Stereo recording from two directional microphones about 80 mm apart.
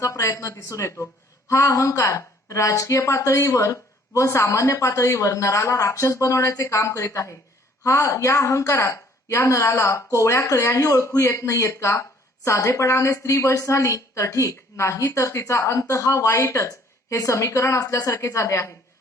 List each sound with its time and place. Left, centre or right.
0.0 s a woman's voice: left